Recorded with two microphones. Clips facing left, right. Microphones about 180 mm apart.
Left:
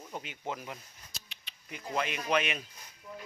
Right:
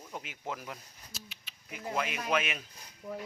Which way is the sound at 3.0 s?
50° right (ahead or behind).